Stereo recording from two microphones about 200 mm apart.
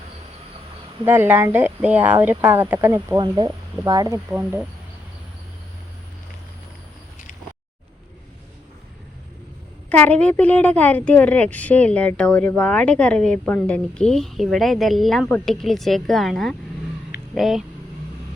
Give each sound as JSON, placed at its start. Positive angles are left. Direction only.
{"t": 1.0, "sound": "speech", "side_deg": -10}
{"t": 9.9, "sound": "a woman's voice", "side_deg": 5}